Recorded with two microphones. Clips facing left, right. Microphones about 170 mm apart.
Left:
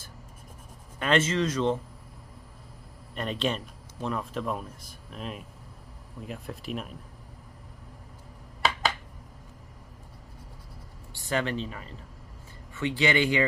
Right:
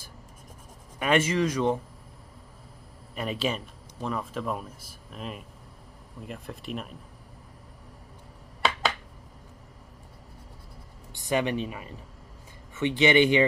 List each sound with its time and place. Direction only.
0.9 s a man's voice: 10° right (ahead or behind)
3.2 s speech: 5° right (ahead or behind)
11.1 s a man's voice: 15° right (ahead or behind)